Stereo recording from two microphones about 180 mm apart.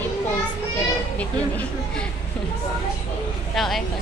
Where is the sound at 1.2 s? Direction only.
5° left (ahead or behind).